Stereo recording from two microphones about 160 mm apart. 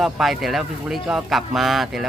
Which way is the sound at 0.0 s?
Centre (ahead or behind).